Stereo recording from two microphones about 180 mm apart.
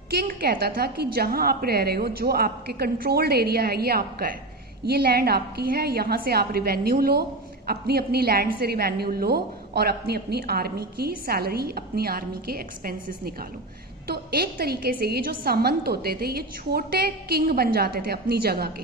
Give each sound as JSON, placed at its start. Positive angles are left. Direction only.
{"t": 0.1, "sound": "a woman's voice", "side_deg": -60}